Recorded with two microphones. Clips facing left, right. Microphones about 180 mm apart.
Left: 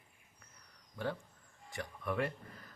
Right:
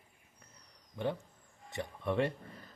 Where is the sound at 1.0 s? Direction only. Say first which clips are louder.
Right 3 dB; 20° right (ahead or behind).